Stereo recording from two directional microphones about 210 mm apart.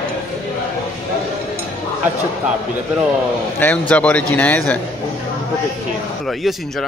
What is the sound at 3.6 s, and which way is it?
A man's voice, 10° left (ahead or behind).